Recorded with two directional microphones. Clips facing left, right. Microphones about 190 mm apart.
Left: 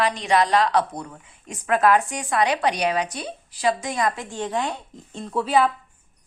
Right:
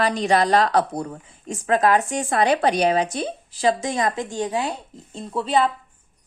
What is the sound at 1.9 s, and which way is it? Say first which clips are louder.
Speech: right 1 dB; 25° right (ahead or behind).